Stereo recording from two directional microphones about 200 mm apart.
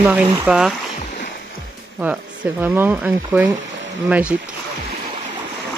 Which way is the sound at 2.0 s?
10° right (ahead or behind).